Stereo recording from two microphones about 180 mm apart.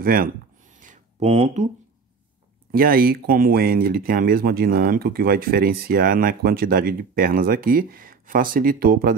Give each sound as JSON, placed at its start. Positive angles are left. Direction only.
{"t": 0.0, "sound": "speech", "side_deg": -55}
{"t": 0.7, "sound": "a sound", "side_deg": -40}
{"t": 2.7, "sound": "speech", "side_deg": -55}